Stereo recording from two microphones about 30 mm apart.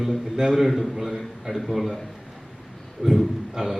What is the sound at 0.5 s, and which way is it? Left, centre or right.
A man's voice, centre.